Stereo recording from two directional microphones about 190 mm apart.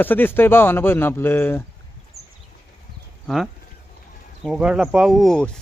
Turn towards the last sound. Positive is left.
turn(degrees=5)  # may be behind; listen again after turning